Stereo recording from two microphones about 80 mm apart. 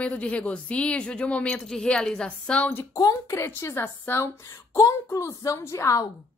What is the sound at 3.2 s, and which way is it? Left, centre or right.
A woman's voice, left.